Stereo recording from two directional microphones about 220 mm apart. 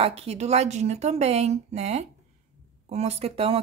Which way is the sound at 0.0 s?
25° right (ahead or behind).